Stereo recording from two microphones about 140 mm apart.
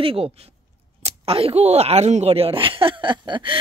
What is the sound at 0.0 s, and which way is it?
Speech, 40° right (ahead or behind).